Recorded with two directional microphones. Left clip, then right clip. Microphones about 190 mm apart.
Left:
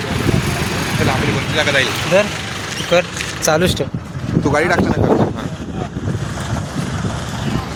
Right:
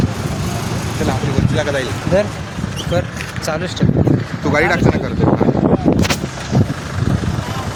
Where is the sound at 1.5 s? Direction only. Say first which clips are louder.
Left 4 dB; 20° right (ahead or behind).